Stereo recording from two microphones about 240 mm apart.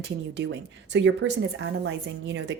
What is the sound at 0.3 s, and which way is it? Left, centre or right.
A woman's voice, right.